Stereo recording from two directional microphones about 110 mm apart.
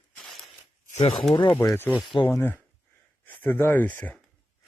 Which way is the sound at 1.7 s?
20° left (ahead or behind).